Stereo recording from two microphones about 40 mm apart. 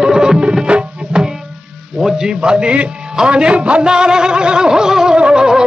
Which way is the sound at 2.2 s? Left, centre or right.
Right.